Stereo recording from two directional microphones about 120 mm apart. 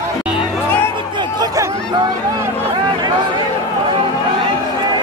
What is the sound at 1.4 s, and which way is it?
Speech, 35° right (ahead or behind).